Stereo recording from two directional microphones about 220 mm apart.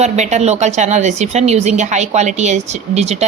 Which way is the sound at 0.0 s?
30° right (ahead or behind).